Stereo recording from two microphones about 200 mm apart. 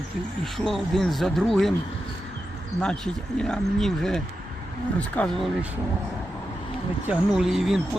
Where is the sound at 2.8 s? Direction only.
5° left (ahead or behind).